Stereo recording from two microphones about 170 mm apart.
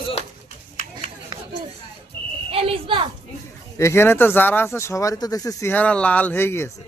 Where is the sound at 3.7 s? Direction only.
15° left (ahead or behind).